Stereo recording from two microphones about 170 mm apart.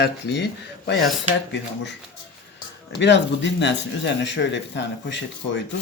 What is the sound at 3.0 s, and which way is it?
A man's voice, 90° left.